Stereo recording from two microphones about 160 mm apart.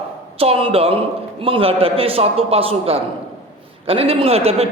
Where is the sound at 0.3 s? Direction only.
35° right (ahead or behind).